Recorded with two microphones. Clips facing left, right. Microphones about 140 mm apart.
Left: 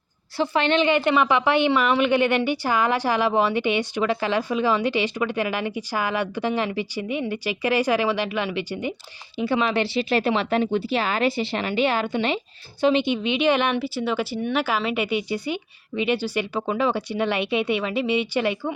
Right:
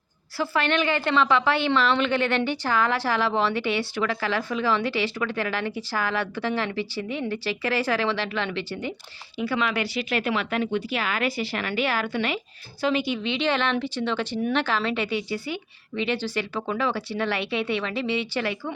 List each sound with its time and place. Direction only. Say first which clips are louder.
0.3 s a woman's voice: left 3 dB; 20° left (ahead or behind)